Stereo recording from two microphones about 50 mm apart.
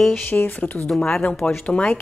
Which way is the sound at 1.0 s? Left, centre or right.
Left.